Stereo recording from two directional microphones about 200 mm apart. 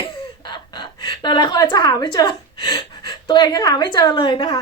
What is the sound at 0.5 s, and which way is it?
A woman's voice, 20° left (ahead or behind).